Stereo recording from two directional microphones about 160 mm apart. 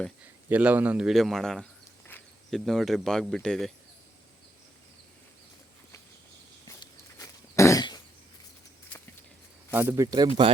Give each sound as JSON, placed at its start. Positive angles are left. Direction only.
{"t": 0.4, "sound": "a man's voice", "side_deg": -10}
{"t": 6.7, "sound": "cough", "side_deg": 20}
{"t": 9.7, "sound": "a man's voice", "side_deg": -15}